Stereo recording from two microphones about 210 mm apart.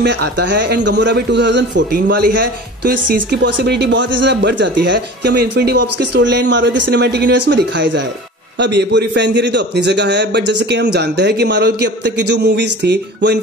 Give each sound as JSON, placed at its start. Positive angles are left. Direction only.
{"t": 0.0, "sound": "a man's voice", "side_deg": -55}